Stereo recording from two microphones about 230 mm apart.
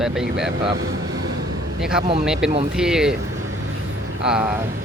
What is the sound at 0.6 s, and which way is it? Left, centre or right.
Speech, centre.